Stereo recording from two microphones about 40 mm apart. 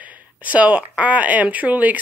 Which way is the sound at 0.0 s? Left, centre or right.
Right.